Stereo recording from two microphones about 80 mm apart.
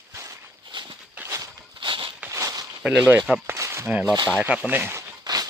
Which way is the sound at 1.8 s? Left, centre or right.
Right.